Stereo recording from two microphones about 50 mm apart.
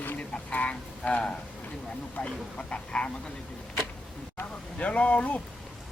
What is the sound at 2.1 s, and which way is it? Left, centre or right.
Speech, left.